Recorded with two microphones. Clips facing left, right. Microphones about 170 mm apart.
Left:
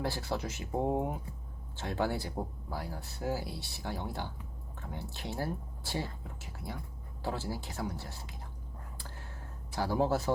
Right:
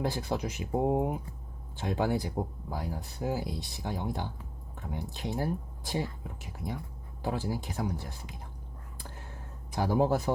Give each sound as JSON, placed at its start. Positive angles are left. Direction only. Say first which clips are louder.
{"t": 0.0, "sound": "speech", "louder": "right 3 dB", "side_deg": -15}
{"t": 9.7, "sound": "speech", "louder": "right 3 dB", "side_deg": -15}